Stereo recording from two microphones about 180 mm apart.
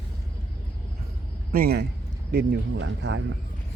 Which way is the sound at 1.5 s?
55° right (ahead or behind).